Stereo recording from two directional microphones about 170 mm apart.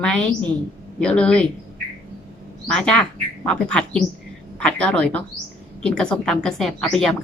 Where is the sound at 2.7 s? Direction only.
5° left (ahead or behind).